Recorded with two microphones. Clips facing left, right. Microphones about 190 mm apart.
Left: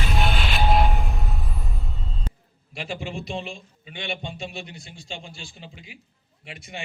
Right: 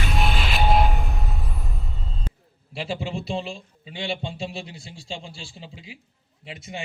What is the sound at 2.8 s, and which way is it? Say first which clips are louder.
A man's voice: right 3 dB; 30° right (ahead or behind).